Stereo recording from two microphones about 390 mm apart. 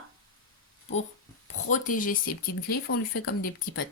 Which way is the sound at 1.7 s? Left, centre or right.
Centre.